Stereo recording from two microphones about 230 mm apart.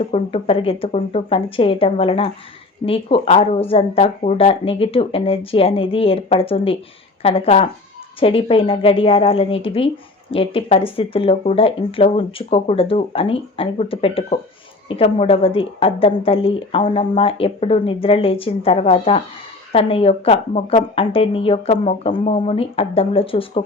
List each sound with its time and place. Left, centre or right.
0.0 s a woman's voice: left